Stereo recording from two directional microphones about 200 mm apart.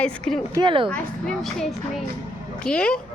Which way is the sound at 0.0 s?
5° left (ahead or behind).